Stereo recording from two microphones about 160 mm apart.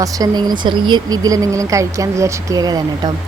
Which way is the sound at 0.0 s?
20° right (ahead or behind).